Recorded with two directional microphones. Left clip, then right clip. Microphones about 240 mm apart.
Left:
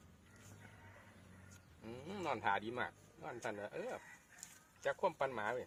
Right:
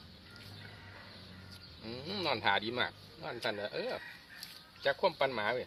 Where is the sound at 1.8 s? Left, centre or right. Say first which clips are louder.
Right 7 dB; centre.